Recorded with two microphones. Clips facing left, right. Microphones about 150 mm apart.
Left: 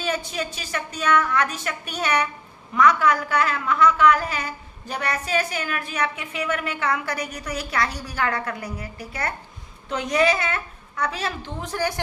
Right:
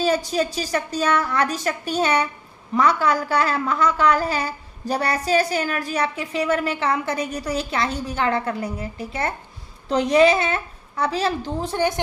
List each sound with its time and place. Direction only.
0.0 s a woman's voice: 35° right (ahead or behind)